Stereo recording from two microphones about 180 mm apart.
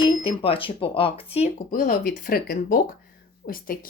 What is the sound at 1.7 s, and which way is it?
Speech, 50° left (ahead or behind).